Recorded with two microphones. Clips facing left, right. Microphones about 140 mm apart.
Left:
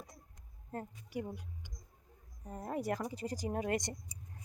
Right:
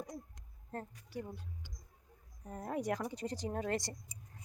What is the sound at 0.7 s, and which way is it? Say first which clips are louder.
Speech: left 2 dB; 10° left (ahead or behind).